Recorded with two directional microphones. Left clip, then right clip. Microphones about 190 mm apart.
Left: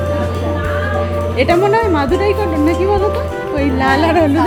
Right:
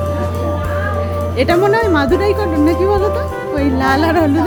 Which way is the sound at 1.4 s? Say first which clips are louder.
Even; 15° right (ahead or behind).